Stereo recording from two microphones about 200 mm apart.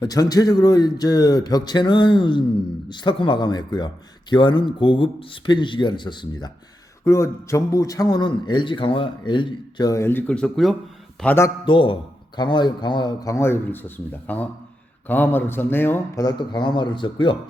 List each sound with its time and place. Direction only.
0.0 s a man's voice: 20° left (ahead or behind)
11.6 s a man's voice: 25° left (ahead or behind)